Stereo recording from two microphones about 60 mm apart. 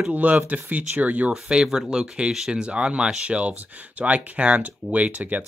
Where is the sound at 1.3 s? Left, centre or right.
Centre.